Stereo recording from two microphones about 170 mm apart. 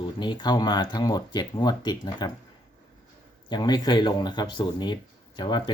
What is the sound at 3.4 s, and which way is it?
Speech, 25° left (ahead or behind).